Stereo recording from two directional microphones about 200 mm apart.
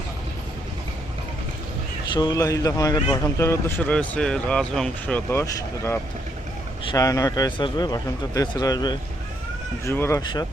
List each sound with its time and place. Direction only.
2.1 s a man's voice: 20° left (ahead or behind)